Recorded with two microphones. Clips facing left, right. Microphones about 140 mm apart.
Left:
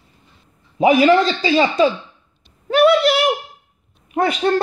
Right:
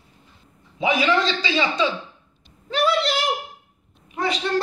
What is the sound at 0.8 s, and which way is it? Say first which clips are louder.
A man's voice: left 8 dB; 45° left (ahead or behind).